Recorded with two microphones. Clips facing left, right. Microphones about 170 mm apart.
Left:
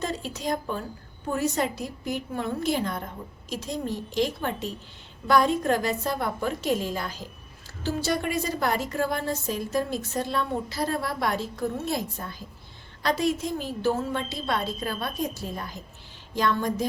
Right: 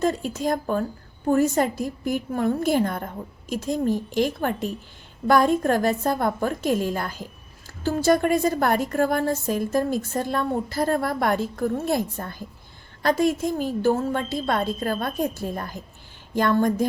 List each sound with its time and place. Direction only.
0.0 s a woman's voice: 50° right (ahead or behind)